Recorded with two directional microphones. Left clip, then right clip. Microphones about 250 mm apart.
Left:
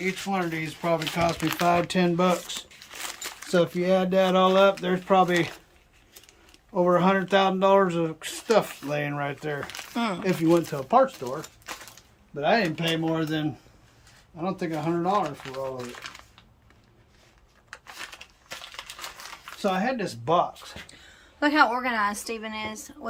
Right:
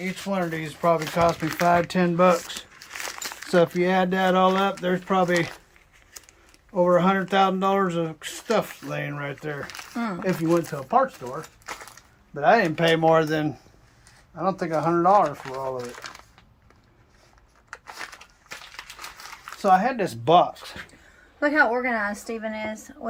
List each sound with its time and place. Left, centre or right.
0.3 s speech: centre
1.3 s speech: centre
1.6 s speech: centre
3.5 s speech: centre
6.7 s speech: centre
12.7 s speech: centre
14.4 s speech: centre
17.7 s a sound: centre
20.2 s speech: right
21.4 s speech: centre